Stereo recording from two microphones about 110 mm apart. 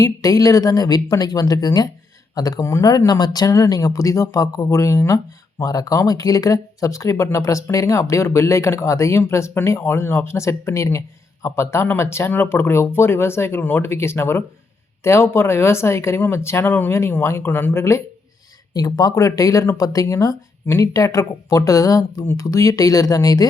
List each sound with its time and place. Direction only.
0.0 s speech: 35° left (ahead or behind)